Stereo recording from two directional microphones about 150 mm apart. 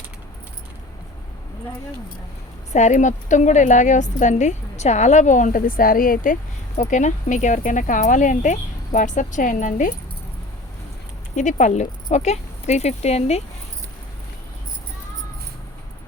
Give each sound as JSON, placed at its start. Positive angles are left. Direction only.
{"t": 2.7, "sound": "a woman's voice", "side_deg": 55}
{"t": 6.7, "sound": "a woman's voice", "side_deg": 55}
{"t": 11.3, "sound": "speech", "side_deg": 55}